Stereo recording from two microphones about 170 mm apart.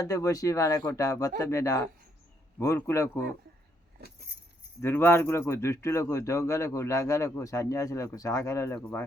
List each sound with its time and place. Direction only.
0.0 s speech: 20° left (ahead or behind)
4.8 s speech: 15° left (ahead or behind)